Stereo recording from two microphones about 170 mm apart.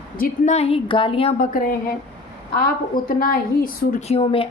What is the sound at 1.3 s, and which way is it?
A woman's voice, 50° left (ahead or behind).